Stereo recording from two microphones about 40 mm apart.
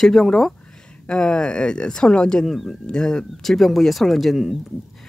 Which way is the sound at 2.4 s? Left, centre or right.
Centre.